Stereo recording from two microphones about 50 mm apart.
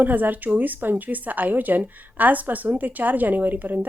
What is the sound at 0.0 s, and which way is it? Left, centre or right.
A woman's voice, right.